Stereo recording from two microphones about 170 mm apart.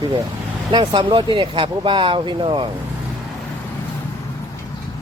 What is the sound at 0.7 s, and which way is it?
Speech, 25° right (ahead or behind).